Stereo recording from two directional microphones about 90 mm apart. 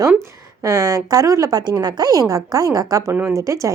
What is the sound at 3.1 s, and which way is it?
Speech, 20° right (ahead or behind).